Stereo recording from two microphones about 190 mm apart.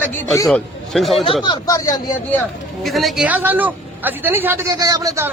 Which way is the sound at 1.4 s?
20° left (ahead or behind).